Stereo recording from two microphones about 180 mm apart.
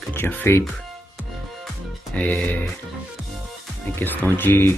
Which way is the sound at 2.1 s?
5° left (ahead or behind).